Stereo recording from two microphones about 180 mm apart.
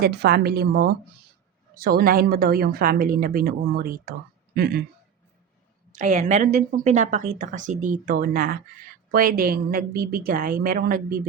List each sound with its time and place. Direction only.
0.0 s a woman's voice: 65° right (ahead or behind)
5.9 s speech: 45° right (ahead or behind)